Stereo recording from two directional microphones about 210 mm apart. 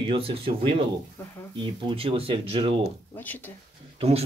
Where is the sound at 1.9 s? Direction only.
25° right (ahead or behind).